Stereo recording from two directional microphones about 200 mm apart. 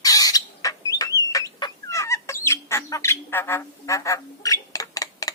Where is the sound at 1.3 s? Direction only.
15° left (ahead or behind).